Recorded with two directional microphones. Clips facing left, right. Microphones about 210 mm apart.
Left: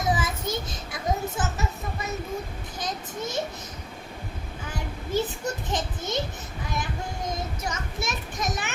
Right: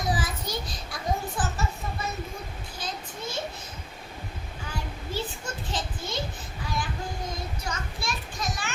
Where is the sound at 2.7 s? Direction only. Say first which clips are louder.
Left 5 dB; 20° left (ahead or behind).